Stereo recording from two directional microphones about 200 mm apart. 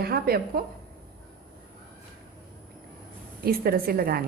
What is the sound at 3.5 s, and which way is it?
Speech, 50° right (ahead or behind).